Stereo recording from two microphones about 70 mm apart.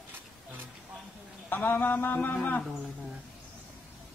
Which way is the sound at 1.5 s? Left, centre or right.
Left.